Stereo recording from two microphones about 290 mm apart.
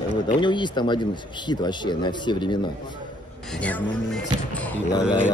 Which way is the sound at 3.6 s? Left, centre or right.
Centre.